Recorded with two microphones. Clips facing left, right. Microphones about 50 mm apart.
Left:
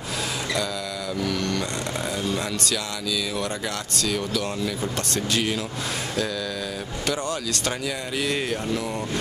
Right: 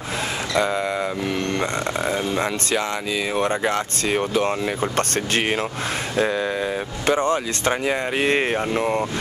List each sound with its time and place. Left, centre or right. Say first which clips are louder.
1.2 s speech: right 3 dB; right